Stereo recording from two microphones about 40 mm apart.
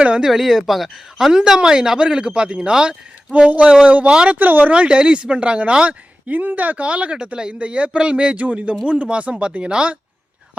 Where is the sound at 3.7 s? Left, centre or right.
Right.